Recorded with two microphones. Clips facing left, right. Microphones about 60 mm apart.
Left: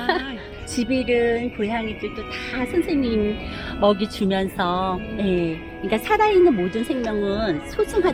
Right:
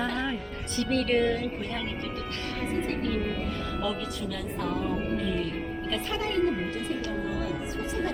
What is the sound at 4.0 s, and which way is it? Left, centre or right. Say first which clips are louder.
Speech: left 11 dB; left.